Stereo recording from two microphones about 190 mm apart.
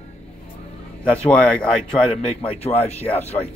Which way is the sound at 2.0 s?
30° left (ahead or behind).